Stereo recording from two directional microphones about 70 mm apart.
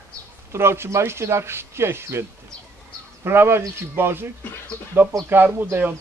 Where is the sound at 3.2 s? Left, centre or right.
Right.